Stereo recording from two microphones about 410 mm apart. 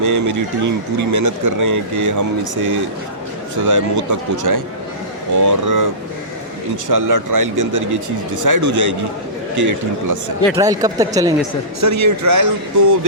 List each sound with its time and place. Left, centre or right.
0.0 s speech: right
6.8 s speech: right
10.5 s speech: centre
11.8 s speech: right